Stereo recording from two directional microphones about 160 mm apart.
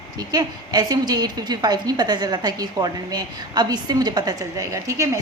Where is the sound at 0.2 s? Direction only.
25° right (ahead or behind).